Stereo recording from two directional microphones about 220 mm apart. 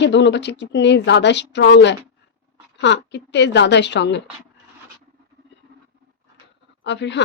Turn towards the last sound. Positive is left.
turn(degrees=55)  # may be behind; listen again after turning